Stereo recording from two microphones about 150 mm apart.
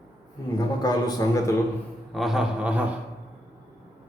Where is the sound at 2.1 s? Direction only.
Centre (ahead or behind).